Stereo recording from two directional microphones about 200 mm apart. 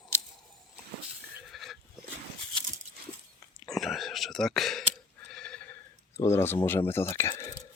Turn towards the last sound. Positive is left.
turn(degrees=15)  # may be behind; listen again after turning